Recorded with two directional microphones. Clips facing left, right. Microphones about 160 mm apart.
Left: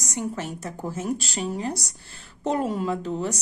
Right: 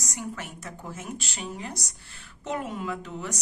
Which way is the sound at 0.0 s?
25° left (ahead or behind).